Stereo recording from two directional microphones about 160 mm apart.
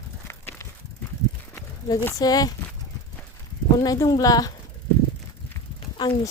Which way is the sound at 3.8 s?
20° left (ahead or behind).